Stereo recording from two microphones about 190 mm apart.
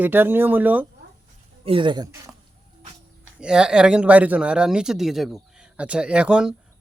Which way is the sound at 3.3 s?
5° right (ahead or behind).